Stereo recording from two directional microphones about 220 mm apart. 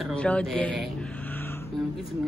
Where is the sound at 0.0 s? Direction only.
5° left (ahead or behind).